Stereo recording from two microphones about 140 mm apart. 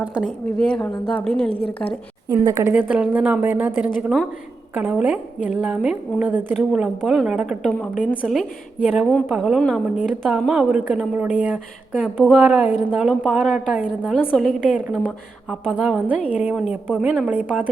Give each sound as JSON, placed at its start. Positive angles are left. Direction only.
{"t": 0.0, "sound": "a woman's voice", "side_deg": -10}
{"t": 0.3, "sound": "a woman's voice", "side_deg": 5}
{"t": 2.3, "sound": "a woman's voice", "side_deg": -25}
{"t": 2.6, "sound": "a woman's voice", "side_deg": -10}
{"t": 8.1, "sound": "a woman's voice", "side_deg": 10}
{"t": 8.4, "sound": "a woman's voice", "side_deg": -5}
{"t": 12.4, "sound": "a woman's voice", "side_deg": -10}
{"t": 14.0, "sound": "a woman's voice", "side_deg": 15}
{"t": 14.3, "sound": "a woman's voice", "side_deg": 0}